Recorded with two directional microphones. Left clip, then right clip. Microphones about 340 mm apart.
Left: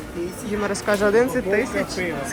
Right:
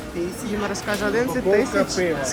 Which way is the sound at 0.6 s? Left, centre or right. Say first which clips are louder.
Left 5 dB; centre.